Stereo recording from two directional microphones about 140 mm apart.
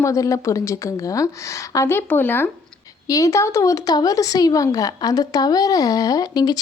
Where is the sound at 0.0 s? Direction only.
20° left (ahead or behind).